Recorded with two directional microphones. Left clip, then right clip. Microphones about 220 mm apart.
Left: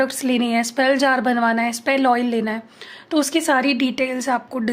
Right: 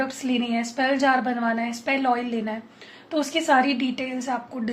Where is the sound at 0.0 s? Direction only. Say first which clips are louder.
Left 6 dB; 50° left (ahead or behind).